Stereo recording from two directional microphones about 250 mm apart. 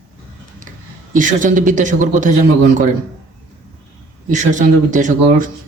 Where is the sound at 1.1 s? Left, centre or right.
Right.